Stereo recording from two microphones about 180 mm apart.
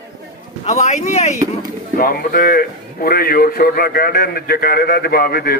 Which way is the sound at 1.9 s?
55° left (ahead or behind).